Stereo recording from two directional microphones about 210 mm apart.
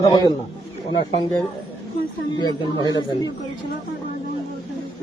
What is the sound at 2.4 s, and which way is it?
Speech, 20° left (ahead or behind).